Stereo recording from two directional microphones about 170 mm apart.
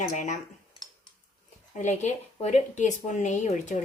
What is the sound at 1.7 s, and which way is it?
A woman's voice, 45° left (ahead or behind).